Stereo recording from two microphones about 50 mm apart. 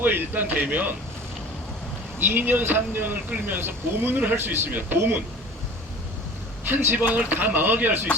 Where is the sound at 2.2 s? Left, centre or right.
Right.